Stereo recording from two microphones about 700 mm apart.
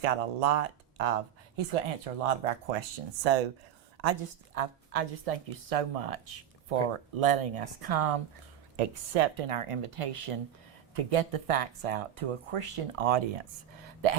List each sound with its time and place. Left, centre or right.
0.0 s speech: right
4.5 s speech: right
8.7 s speech: right